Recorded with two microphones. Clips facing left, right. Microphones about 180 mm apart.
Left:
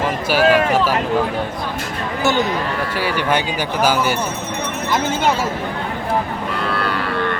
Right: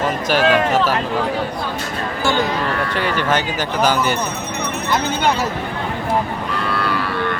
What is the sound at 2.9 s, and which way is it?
Speech, 10° left (ahead or behind).